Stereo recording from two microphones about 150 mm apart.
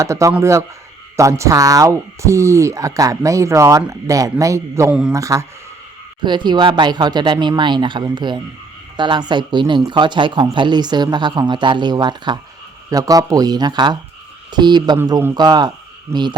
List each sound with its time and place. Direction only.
0.0 s speech: 20° right (ahead or behind)
4.9 s speech: 5° right (ahead or behind)
5.1 s speech: 20° right (ahead or behind)